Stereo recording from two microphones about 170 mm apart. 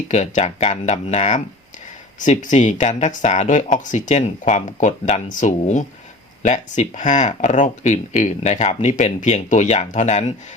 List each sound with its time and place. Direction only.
0.1 s speech: 45° left (ahead or behind)